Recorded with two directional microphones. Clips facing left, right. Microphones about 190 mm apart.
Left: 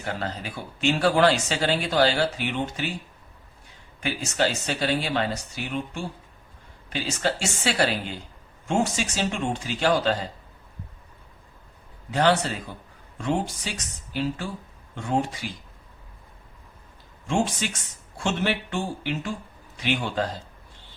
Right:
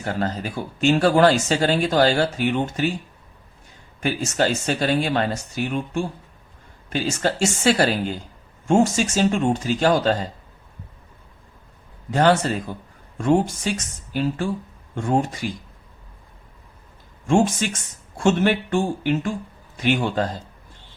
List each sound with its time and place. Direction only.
0.0 s speech: 45° right (ahead or behind)
4.0 s speech: 45° right (ahead or behind)
12.1 s speech: 45° right (ahead or behind)
17.2 s speech: 50° right (ahead or behind)